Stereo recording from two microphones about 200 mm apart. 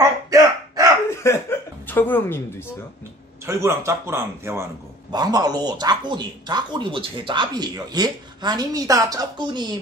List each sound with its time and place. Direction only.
0.0 s a sound: 15° right (ahead or behind)
1.2 s chuckle: 10° left (ahead or behind)
3.4 s speech: 15° right (ahead or behind)